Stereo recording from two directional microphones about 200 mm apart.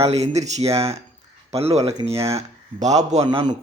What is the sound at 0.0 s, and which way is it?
Speech, 30° right (ahead or behind).